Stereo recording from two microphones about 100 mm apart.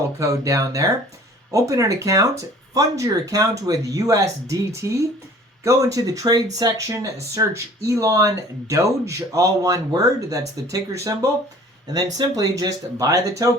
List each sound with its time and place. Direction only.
0.2 s speech: 35° right (ahead or behind)